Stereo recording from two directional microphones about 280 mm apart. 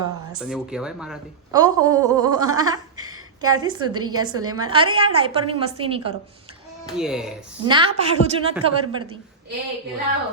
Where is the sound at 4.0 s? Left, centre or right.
Right.